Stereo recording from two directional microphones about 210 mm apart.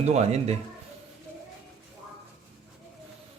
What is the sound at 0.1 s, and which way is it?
Speech, 30° right (ahead or behind).